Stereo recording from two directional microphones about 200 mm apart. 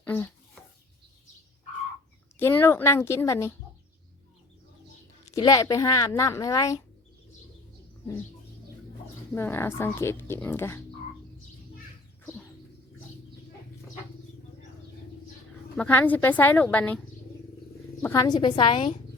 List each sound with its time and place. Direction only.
0.0 s a sound: 10° left (ahead or behind)
2.4 s speech: 10° left (ahead or behind)
5.2 s speech: 15° left (ahead or behind)
9.3 s speech: 10° left (ahead or behind)
15.7 s speech: 10° left (ahead or behind)
18.0 s a woman's voice: 15° left (ahead or behind)